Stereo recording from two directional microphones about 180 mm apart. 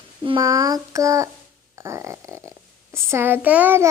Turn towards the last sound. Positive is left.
turn(degrees=-10)  # may be behind; listen again after turning